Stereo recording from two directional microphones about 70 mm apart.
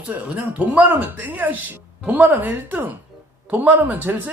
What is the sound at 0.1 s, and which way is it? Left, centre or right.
A man's voice, right.